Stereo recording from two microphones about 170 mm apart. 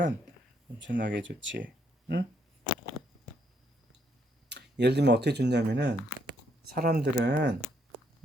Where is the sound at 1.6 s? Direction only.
75° right (ahead or behind).